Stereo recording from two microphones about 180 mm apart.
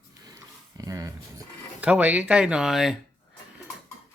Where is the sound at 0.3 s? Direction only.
20° right (ahead or behind).